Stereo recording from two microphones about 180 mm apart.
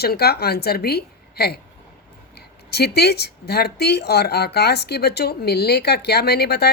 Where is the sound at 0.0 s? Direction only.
60° left (ahead or behind).